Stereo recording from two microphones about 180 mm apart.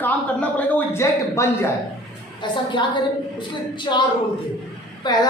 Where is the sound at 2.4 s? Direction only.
25° left (ahead or behind).